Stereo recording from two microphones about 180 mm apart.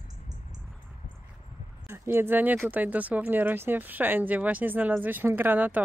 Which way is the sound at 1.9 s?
10° right (ahead or behind).